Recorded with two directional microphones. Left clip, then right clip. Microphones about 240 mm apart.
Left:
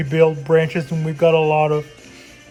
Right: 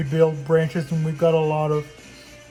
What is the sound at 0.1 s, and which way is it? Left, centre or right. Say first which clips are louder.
Speech: left 4 dB; centre.